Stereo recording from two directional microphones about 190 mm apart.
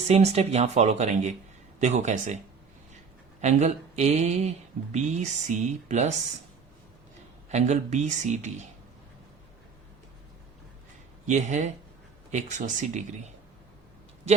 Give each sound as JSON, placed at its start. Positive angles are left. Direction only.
{"t": 0.1, "sound": "speech", "side_deg": -35}
{"t": 3.4, "sound": "speech", "side_deg": -35}
{"t": 7.5, "sound": "speech", "side_deg": -35}
{"t": 11.3, "sound": "speech", "side_deg": -40}